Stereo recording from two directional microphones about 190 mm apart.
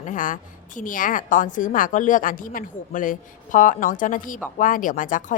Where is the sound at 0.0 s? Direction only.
45° left (ahead or behind).